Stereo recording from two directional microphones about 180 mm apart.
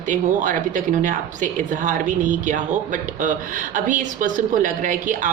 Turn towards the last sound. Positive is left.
turn(degrees=-45)  # may be behind; listen again after turning